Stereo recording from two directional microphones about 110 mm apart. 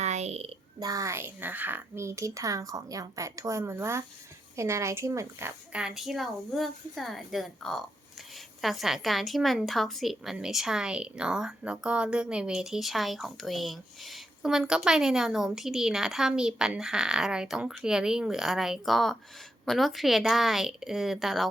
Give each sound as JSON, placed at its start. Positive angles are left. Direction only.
{"t": 0.0, "sound": "a sound", "side_deg": -90}
{"t": 0.8, "sound": "speech", "side_deg": -35}
{"t": 5.7, "sound": "a woman's voice", "side_deg": -5}